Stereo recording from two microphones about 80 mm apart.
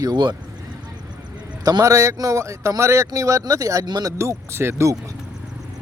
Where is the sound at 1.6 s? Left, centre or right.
Right.